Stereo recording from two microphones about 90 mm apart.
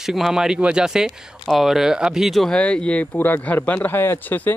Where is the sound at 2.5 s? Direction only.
10° left (ahead or behind).